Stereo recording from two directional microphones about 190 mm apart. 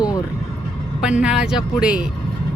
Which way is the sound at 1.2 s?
5° right (ahead or behind).